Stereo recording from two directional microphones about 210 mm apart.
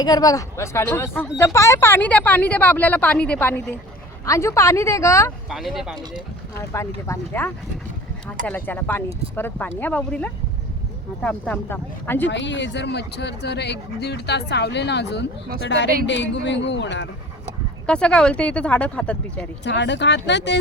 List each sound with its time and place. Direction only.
0.0 s speech: 20° left (ahead or behind)
5.5 s speech: centre (ahead or behind)
6.6 s speech: 15° left (ahead or behind)
12.3 s a man's voice: 60° left (ahead or behind)
17.8 s speech: 5° left (ahead or behind)
19.6 s a man's voice: 55° left (ahead or behind)